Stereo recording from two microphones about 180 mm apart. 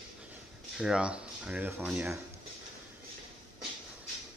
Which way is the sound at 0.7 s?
5° right (ahead or behind).